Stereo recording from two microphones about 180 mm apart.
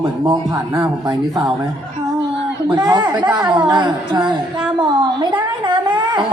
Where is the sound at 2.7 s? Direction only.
20° right (ahead or behind).